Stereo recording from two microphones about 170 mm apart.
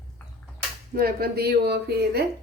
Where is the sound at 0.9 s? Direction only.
60° right (ahead or behind).